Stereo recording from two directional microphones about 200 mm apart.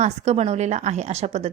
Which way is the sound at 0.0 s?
35° right (ahead or behind).